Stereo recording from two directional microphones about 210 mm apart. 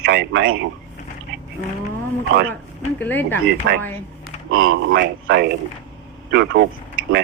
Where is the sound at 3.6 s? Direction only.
50° right (ahead or behind).